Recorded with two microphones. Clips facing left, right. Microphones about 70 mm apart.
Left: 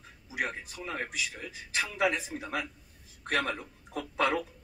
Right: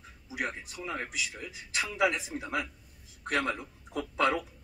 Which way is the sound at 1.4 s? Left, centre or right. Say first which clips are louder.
Left 1 dB; left.